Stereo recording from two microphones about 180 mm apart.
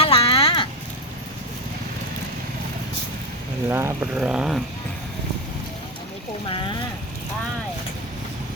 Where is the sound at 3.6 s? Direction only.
10° right (ahead or behind).